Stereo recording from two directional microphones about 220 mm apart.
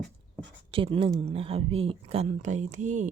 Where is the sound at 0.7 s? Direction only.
25° right (ahead or behind).